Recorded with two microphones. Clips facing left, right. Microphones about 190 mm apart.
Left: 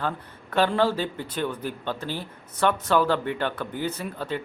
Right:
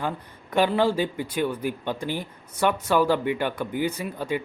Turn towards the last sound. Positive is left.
turn(degrees=-10)  # may be behind; listen again after turning